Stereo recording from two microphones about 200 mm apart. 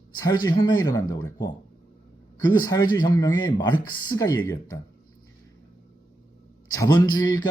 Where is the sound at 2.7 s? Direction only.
20° left (ahead or behind).